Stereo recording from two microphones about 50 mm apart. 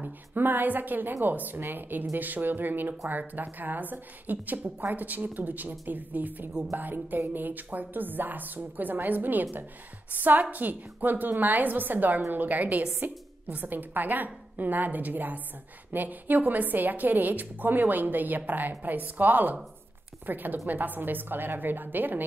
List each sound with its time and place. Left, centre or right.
0.0 s a woman's voice: right